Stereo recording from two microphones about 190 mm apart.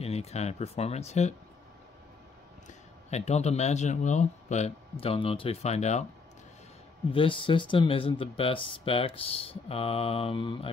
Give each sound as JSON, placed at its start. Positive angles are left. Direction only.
{"t": 0.0, "sound": "speech", "side_deg": 35}
{"t": 3.1, "sound": "speech", "side_deg": 35}
{"t": 7.1, "sound": "speech", "side_deg": 25}